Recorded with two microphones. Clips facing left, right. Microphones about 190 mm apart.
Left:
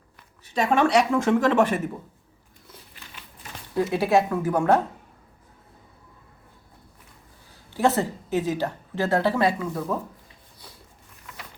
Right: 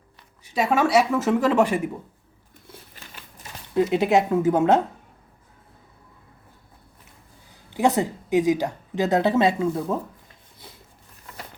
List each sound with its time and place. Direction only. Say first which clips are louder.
0.4 s a woman's voice: even; 10° right (ahead or behind)
3.8 s speech: right 2 dB; 20° right (ahead or behind)
7.7 s a woman's voice: right 1 dB; 15° right (ahead or behind)